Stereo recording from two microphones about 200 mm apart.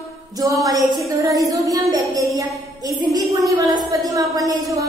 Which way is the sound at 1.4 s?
15° right (ahead or behind).